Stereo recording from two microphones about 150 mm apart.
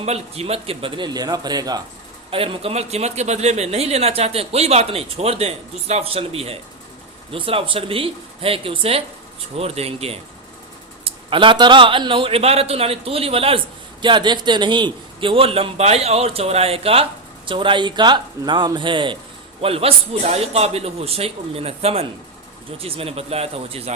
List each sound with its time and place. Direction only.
0.0 s a man's voice: 45° right (ahead or behind); by 1.8 s 25° right (ahead or behind)
2.3 s a man's voice: 40° right (ahead or behind)